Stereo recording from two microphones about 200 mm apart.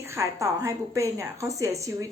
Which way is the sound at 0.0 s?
15° right (ahead or behind).